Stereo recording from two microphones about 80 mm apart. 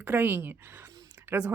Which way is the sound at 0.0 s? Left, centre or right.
Right.